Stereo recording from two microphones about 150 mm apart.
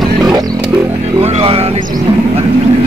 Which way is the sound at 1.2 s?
40° right (ahead or behind).